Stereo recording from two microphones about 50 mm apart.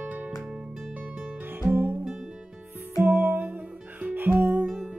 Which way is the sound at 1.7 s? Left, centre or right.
Right.